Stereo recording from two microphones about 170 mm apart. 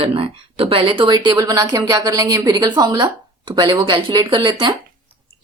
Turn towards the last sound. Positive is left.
turn(degrees=-25)  # may be behind; listen again after turning